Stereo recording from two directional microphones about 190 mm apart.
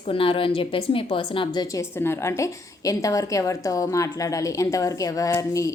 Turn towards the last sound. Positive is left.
turn(degrees=15)  # may be behind; listen again after turning